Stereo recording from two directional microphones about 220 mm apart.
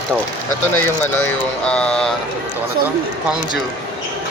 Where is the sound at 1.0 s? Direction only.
5° left (ahead or behind).